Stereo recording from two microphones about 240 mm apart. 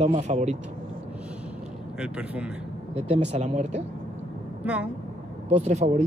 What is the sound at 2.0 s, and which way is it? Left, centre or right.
Speech, centre.